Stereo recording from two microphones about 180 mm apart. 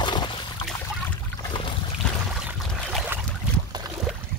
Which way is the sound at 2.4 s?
5° right (ahead or behind).